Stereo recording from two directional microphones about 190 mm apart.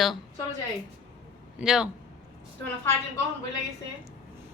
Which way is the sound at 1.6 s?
5° right (ahead or behind).